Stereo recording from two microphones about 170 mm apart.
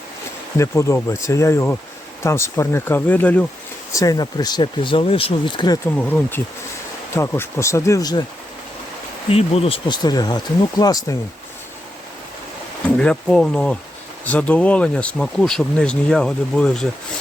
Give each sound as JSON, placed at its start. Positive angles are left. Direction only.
{"t": 0.6, "sound": "speech", "side_deg": 15}
{"t": 3.9, "sound": "speech", "side_deg": 20}
{"t": 6.0, "sound": "speech", "side_deg": 10}
{"t": 9.3, "sound": "speech", "side_deg": 35}
{"t": 13.0, "sound": "speech", "side_deg": 5}